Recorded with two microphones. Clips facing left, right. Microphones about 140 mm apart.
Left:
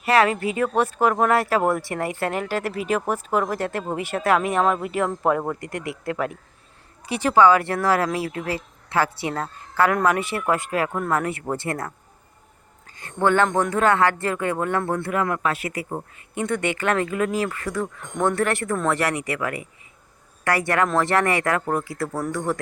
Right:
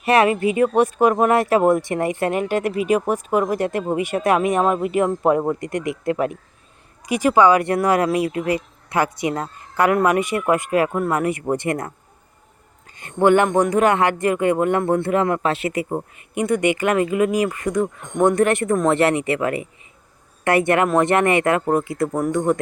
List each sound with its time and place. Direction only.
0.0 s speech: 20° right (ahead or behind)